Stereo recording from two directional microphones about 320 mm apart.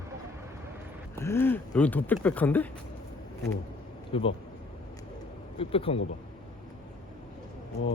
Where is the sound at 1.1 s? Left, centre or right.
Centre.